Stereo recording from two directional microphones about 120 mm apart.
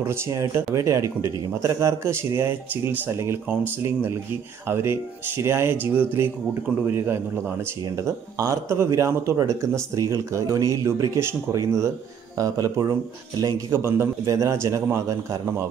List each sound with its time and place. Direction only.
0.0 s speech: 20° right (ahead or behind)